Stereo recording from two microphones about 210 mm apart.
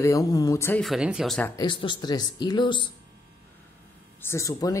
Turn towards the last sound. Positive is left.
turn(degrees=15)  # may be behind; listen again after turning